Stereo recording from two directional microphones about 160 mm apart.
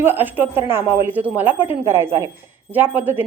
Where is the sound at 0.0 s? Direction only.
10° right (ahead or behind).